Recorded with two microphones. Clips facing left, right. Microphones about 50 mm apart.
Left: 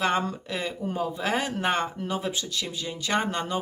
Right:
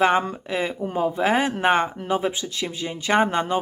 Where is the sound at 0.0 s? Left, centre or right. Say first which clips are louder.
Right 6 dB; right.